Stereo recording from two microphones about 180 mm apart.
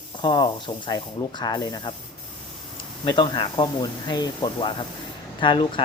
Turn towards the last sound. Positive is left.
turn(degrees=25)  # may be behind; listen again after turning